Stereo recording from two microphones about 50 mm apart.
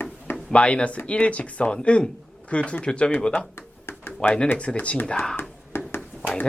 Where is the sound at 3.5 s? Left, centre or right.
Left.